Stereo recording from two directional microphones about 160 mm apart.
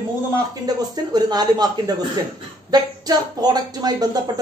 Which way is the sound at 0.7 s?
25° right (ahead or behind).